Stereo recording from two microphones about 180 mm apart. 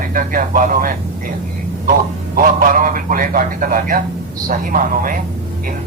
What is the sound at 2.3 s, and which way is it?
Speech, 50° right (ahead or behind).